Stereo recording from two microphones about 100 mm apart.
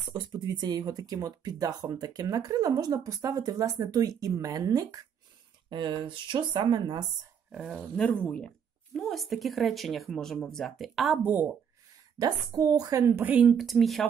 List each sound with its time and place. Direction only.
0.5 s speech: 40° right (ahead or behind)
5.7 s speech: 50° right (ahead or behind)
7.7 s speech: 10° left (ahead or behind)
11.2 s a woman's voice: 20° right (ahead or behind)
12.2 s a woman's voice: 40° right (ahead or behind); by 13.6 s 15° right (ahead or behind)
13.6 s speech: centre (ahead or behind)